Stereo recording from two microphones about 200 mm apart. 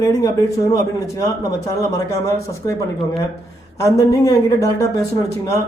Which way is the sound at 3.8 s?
15° left (ahead or behind).